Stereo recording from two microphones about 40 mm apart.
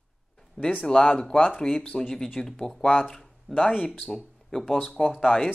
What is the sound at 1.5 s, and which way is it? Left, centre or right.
Speech, centre.